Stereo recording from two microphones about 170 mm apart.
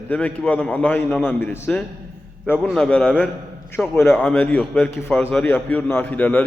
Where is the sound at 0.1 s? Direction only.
10° left (ahead or behind).